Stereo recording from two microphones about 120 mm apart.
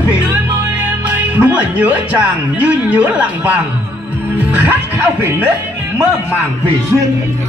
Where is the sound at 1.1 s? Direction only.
15° right (ahead or behind).